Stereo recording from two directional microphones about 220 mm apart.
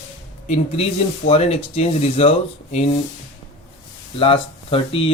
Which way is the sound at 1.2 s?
25° left (ahead or behind).